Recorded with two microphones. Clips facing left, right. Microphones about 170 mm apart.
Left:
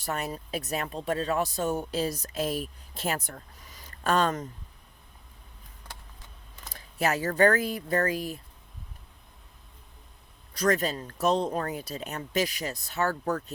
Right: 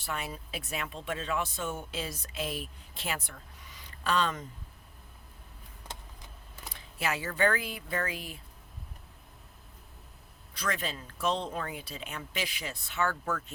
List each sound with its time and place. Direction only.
0.0 s speech: 40° left (ahead or behind)
5.9 s vehicle: 25° right (ahead or behind)
6.7 s speech: 40° left (ahead or behind)
10.5 s speech: 40° left (ahead or behind)